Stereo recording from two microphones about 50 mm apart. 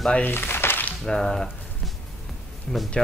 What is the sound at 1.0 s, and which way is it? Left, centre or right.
Speech, centre.